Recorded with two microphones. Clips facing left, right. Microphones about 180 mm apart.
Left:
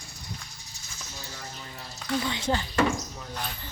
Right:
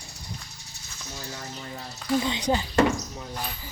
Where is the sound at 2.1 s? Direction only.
20° right (ahead or behind).